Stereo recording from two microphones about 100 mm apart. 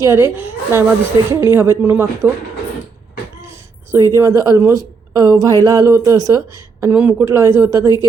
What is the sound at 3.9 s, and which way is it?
A woman's voice, 30° right (ahead or behind).